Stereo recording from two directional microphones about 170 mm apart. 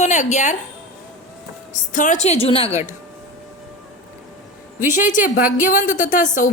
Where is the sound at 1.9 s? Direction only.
50° left (ahead or behind).